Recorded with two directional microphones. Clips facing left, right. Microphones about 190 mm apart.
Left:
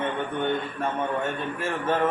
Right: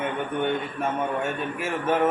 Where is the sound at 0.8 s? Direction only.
10° right (ahead or behind).